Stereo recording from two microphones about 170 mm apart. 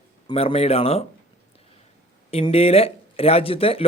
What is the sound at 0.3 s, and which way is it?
Speech, 35° left (ahead or behind).